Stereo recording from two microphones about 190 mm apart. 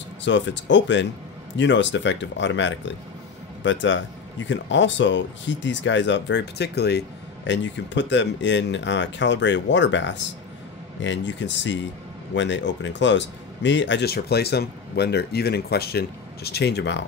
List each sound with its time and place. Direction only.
0.2 s speech: 70° left (ahead or behind)
7.4 s speech: 70° left (ahead or behind)